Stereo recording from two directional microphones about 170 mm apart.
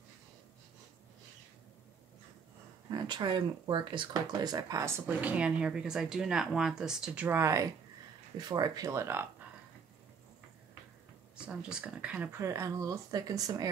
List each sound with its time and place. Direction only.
2.9 s speech: 25° right (ahead or behind)
11.3 s speech: 5° right (ahead or behind); by 13.7 s 20° right (ahead or behind)